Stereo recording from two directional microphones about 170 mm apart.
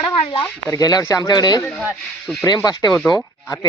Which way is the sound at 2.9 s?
Centre (ahead or behind).